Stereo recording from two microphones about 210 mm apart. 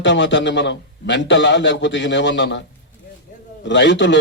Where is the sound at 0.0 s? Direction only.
60° left (ahead or behind).